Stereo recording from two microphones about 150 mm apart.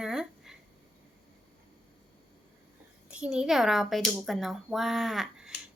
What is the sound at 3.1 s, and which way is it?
A woman's voice, 10° right (ahead or behind).